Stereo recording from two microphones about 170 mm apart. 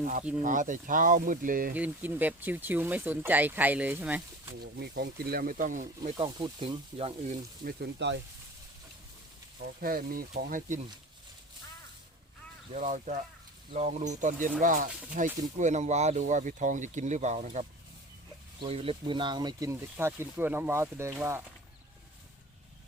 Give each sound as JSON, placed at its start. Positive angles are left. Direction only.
{"t": 0.0, "sound": "speech", "side_deg": -50}
{"t": 1.7, "sound": "speech", "side_deg": -10}
{"t": 4.6, "sound": "speech", "side_deg": -65}
{"t": 6.1, "sound": "speech", "side_deg": -30}
{"t": 7.6, "sound": "speech", "side_deg": -70}
{"t": 9.8, "sound": "speech", "side_deg": -60}
{"t": 12.7, "sound": "speech", "side_deg": -45}
{"t": 18.6, "sound": "speech", "side_deg": -35}